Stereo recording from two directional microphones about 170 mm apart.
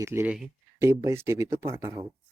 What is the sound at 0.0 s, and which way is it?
Speech, 15° right (ahead or behind).